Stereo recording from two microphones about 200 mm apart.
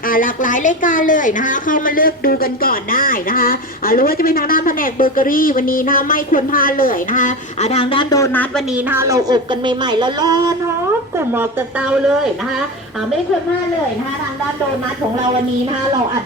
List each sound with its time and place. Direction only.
0.1 s a woman's voice: 40° left (ahead or behind); by 8.6 s 10° left (ahead or behind)
8.7 s speech: 10° right (ahead or behind)
11.9 s speech: 5° right (ahead or behind)